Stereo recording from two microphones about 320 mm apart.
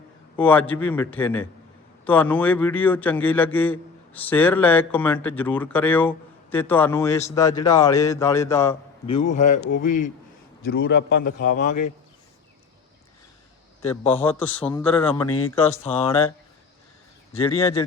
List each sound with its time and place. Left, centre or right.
0.3 s a man's voice: centre; by 11.7 s left
13.9 s speech: centre
14.3 s a man's voice: centre
15.3 s speech: left
15.5 s speech: centre
17.3 s speech: centre